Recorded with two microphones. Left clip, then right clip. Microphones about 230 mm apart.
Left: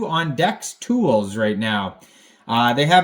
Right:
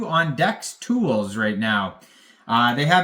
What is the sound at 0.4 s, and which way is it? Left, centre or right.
Speech, right.